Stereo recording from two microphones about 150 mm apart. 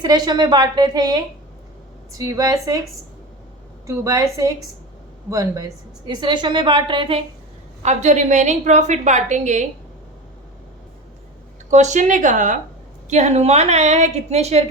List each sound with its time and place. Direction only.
0.0 s a woman's voice: 25° right (ahead or behind)
3.8 s a woman's voice: 20° right (ahead or behind)
7.8 s a woman's voice: 50° right (ahead or behind)
11.7 s a woman's voice: 50° right (ahead or behind)